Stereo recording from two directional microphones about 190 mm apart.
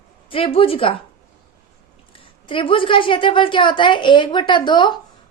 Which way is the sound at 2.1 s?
25° left (ahead or behind).